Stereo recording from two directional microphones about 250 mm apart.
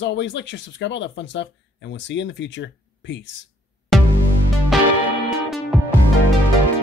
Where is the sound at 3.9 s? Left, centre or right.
Centre.